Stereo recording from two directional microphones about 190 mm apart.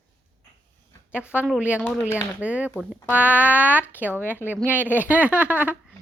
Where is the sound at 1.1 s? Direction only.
5° right (ahead or behind).